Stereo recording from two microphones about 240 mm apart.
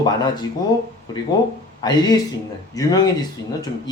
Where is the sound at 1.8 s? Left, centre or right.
Centre.